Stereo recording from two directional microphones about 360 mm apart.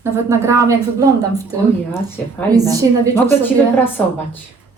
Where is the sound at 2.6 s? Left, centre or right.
Centre.